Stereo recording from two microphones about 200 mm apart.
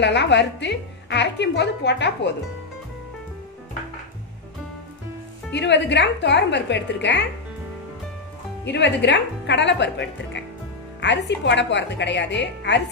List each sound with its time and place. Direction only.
0.0 s a woman's voice: 60° left (ahead or behind)
5.5 s a woman's voice: 60° left (ahead or behind)
8.6 s a woman's voice: 60° left (ahead or behind)